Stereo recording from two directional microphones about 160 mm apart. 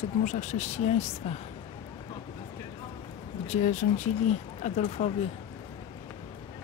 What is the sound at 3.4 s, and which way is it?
Speech, 45° left (ahead or behind).